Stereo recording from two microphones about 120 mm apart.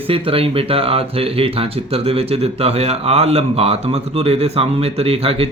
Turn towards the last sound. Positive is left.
turn(degrees=-55)  # may be behind; listen again after turning